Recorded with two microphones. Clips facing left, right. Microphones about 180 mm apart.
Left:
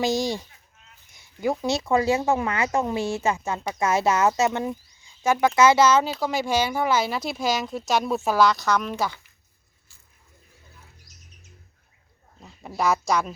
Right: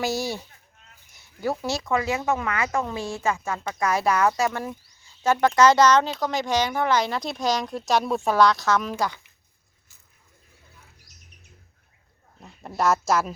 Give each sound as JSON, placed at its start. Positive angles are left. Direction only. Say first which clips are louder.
{"t": 0.0, "sound": "speech", "louder": "left 3 dB", "side_deg": 15}
{"t": 1.8, "sound": "speech", "louder": "left 6 dB", "side_deg": 30}
{"t": 12.4, "sound": "speech", "louder": "right 1 dB", "side_deg": 0}